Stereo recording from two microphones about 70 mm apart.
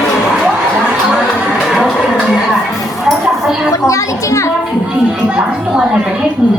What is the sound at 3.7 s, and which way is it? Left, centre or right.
Speech, left.